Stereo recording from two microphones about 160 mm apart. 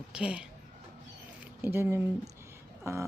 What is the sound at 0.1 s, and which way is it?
Speech, 5° right (ahead or behind).